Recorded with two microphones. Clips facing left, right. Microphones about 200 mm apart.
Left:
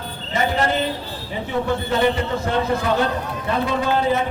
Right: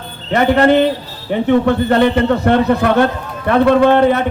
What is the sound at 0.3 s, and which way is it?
A man's voice, 65° right (ahead or behind).